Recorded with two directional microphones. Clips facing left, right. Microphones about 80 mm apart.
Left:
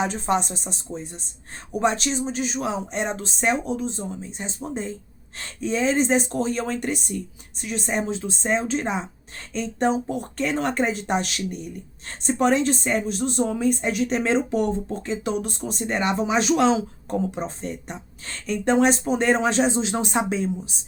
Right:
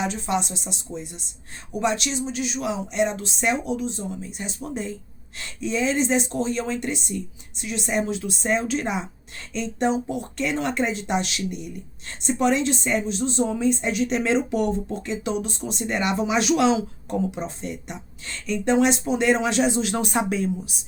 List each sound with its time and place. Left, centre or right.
0.0 s speech: left